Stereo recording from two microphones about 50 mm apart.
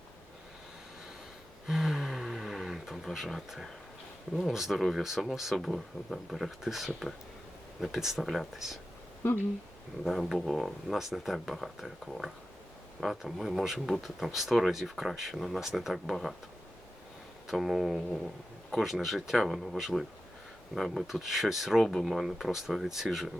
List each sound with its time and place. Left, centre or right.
1.6 s a sound: centre
4.4 s speech: centre
9.2 s speech: left
10.0 s speech: centre
13.0 s speech: centre
13.7 s speech: centre
14.0 s speech: centre
17.5 s speech: centre